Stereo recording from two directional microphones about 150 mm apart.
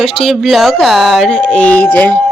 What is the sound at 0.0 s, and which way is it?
Speech, centre (ahead or behind).